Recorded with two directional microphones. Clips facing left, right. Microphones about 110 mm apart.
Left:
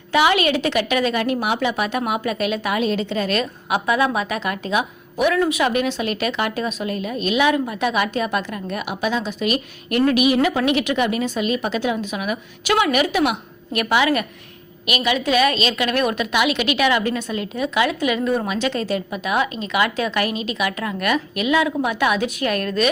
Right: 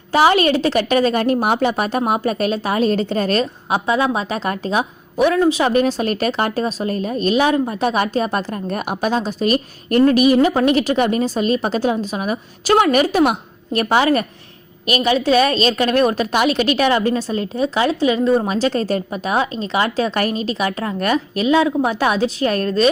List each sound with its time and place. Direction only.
0.1 s a woman's voice: 35° right (ahead or behind)
3.4 s a woman's voice: 30° right (ahead or behind)